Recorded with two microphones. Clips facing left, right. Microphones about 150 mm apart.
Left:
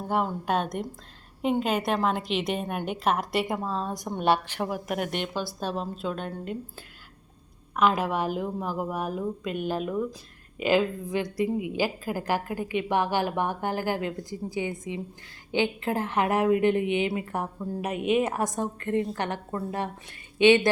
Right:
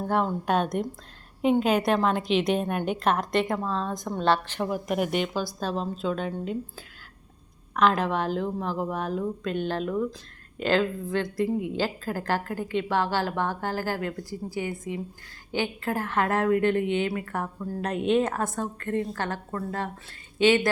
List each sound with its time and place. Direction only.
0.1 s a woman's voice: centre (ahead or behind); by 17.8 s 20° left (ahead or behind)
17.8 s a woman's voice: 5° left (ahead or behind)